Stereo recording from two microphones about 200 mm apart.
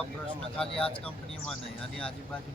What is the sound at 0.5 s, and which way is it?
Speech, 5° left (ahead or behind).